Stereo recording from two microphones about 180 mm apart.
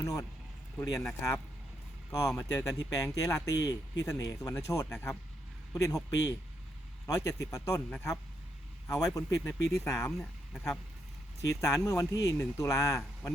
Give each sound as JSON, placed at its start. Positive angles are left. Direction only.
{"t": 0.0, "sound": "speech", "side_deg": 20}
{"t": 7.3, "sound": "speech", "side_deg": 15}
{"t": 11.6, "sound": "speech", "side_deg": 15}